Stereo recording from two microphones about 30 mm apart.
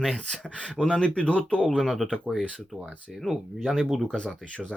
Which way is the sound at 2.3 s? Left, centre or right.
Right.